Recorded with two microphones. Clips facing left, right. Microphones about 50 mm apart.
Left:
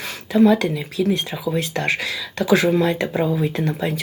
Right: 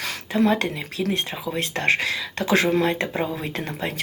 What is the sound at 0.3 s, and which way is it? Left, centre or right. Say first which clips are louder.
Speech: left 5 dB; right.